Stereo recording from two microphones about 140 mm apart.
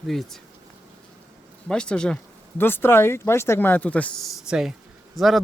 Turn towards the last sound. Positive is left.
turn(degrees=0)  # may be behind; listen again after turning